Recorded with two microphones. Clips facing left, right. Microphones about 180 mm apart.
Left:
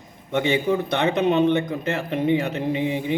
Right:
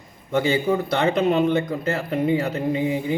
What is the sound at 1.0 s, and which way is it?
Speech, 20° left (ahead or behind).